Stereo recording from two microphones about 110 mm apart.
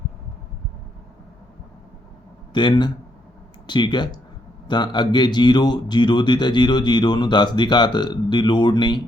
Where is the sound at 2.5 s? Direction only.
45° left (ahead or behind).